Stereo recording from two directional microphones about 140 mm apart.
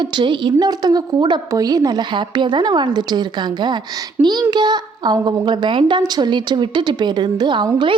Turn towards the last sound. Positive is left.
turn(degrees=-35)  # may be behind; listen again after turning